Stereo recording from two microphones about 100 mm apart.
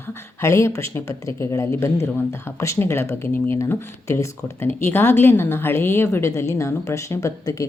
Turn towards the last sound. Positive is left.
turn(degrees=30)  # may be behind; listen again after turning